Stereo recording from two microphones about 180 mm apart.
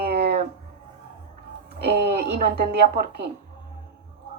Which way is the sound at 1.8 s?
60° right (ahead or behind).